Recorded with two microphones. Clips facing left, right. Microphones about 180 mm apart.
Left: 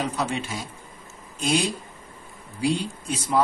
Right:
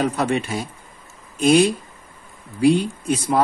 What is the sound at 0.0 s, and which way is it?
Speech, 60° right (ahead or behind).